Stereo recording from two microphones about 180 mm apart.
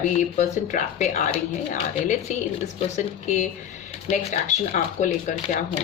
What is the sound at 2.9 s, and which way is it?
Speech, 40° left (ahead or behind).